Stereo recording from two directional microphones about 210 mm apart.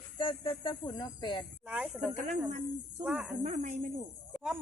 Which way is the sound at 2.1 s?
35° right (ahead or behind).